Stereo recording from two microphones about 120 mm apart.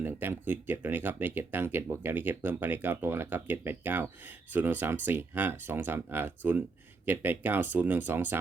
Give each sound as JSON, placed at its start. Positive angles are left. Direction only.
{"t": 0.0, "sound": "speech", "side_deg": -15}